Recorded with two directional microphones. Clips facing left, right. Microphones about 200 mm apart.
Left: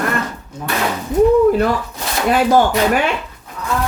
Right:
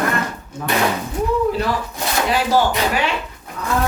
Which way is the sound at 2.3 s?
50° left (ahead or behind).